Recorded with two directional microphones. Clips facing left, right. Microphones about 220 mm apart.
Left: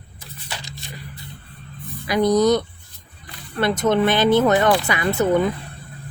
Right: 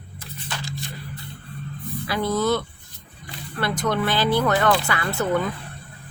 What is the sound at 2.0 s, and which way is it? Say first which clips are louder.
Speech: left 6 dB; 15° left (ahead or behind).